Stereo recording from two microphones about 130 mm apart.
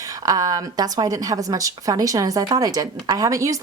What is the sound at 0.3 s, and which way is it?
A woman's voice, 25° right (ahead or behind).